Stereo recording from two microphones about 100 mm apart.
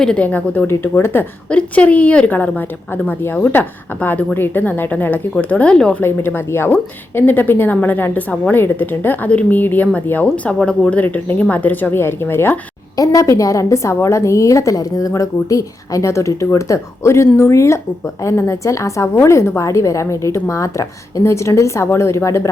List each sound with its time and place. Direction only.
0.0 s a woman's voice: 10° left (ahead or behind)
6.0 s a woman's voice: 20° left (ahead or behind)
13.0 s a woman's voice: 35° left (ahead or behind)